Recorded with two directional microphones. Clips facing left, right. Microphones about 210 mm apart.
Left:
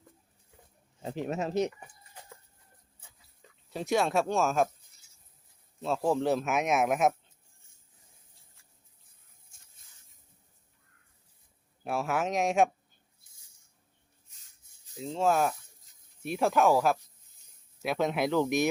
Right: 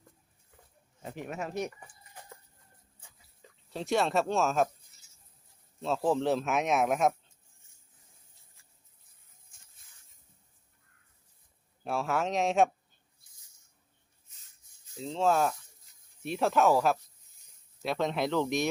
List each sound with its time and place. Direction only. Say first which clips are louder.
1.0 s speech: left 5 dB; 30° left (ahead or behind)
3.7 s speech: left 1 dB; 5° left (ahead or behind)
5.8 s speech: even; centre (ahead or behind)
11.9 s speech: even; centre (ahead or behind)
14.9 s speech: even; 5° left (ahead or behind)